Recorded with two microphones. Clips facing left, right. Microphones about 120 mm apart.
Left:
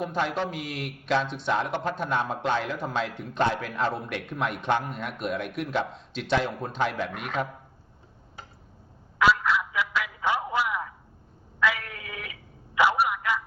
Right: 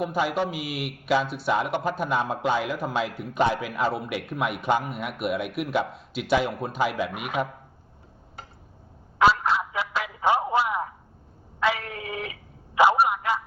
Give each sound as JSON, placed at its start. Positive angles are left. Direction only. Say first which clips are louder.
{"t": 0.0, "sound": "a man's voice", "louder": "right 3 dB", "side_deg": -10}
{"t": 9.1, "sound": "fowl", "louder": "right 2 dB", "side_deg": -30}
{"t": 10.3, "sound": "a sound", "louder": "right 3 dB", "side_deg": -30}
{"t": 11.6, "sound": "telephone", "louder": "right 2 dB", "side_deg": -30}